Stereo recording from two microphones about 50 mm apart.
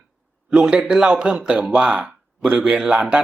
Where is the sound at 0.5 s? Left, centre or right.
Centre.